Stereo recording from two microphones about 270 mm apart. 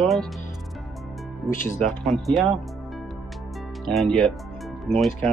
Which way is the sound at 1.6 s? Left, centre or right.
Centre.